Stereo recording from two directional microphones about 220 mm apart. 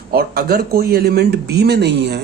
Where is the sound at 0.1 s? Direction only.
45° right (ahead or behind).